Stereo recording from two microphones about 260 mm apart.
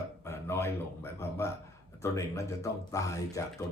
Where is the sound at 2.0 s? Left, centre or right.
Centre.